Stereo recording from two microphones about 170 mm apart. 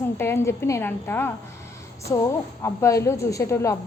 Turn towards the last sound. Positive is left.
turn(degrees=15)  # may be behind; listen again after turning